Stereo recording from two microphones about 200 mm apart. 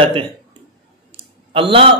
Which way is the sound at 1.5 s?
25° right (ahead or behind).